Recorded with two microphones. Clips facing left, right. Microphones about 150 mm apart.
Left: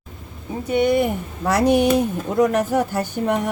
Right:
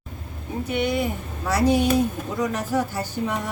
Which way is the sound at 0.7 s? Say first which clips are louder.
Left 7 dB; 50° left (ahead or behind).